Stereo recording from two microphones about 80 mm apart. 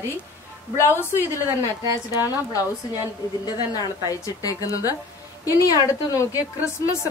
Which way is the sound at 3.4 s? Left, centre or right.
Left.